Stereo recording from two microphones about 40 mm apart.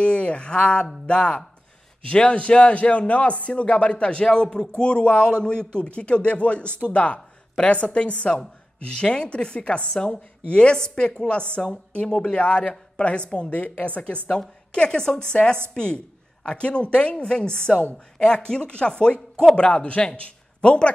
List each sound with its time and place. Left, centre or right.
0.0 s a man's voice: left
13.6 s a woman's voice: left